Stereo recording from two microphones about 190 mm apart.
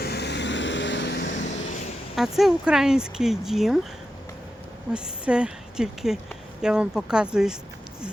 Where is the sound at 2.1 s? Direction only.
Centre (ahead or behind).